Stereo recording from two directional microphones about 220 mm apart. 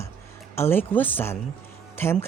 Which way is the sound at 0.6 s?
10° left (ahead or behind).